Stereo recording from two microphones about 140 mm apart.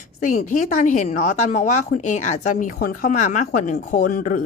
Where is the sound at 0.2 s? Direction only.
65° left (ahead or behind).